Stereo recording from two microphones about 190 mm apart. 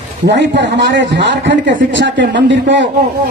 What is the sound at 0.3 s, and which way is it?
Speech, 70° right (ahead or behind).